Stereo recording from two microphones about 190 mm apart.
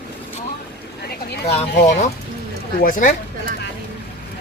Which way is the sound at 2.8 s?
45° left (ahead or behind).